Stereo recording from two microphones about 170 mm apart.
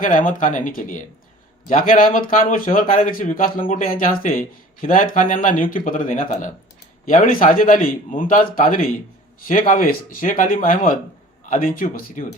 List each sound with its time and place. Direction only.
0.0 s a man's voice: 55° left (ahead or behind)